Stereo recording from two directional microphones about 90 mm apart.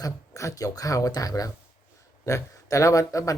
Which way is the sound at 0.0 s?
40° left (ahead or behind).